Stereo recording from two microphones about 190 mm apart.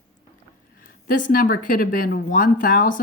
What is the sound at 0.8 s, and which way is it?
Speech, 45° left (ahead or behind).